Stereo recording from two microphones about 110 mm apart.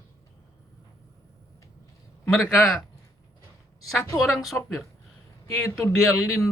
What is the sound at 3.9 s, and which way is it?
Speech, centre (ahead or behind).